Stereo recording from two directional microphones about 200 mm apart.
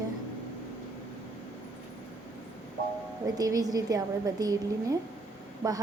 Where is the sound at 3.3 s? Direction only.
15° right (ahead or behind).